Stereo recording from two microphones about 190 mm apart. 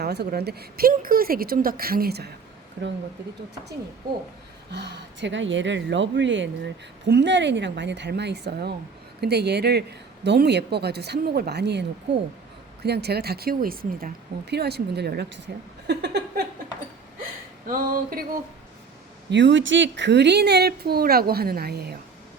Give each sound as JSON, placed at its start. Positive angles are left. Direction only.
{"t": 0.0, "sound": "speech", "side_deg": -60}
{"t": 4.7, "sound": "speech", "side_deg": -65}
{"t": 17.7, "sound": "speech", "side_deg": -45}
{"t": 19.3, "sound": "speech", "side_deg": -70}